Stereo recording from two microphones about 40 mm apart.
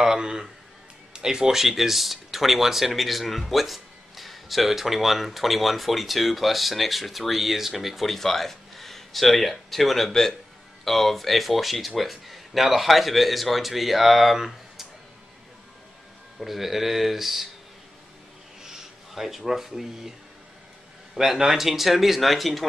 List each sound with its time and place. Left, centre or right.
0.0 s a man's voice: centre
16.3 s speech: centre
18.6 s speech: centre